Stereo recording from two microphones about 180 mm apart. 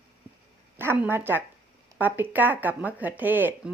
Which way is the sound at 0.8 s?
10° right (ahead or behind).